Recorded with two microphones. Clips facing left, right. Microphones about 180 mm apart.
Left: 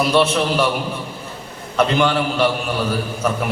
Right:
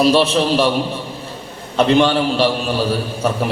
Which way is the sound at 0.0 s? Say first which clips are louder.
Right 3 dB; 30° right (ahead or behind).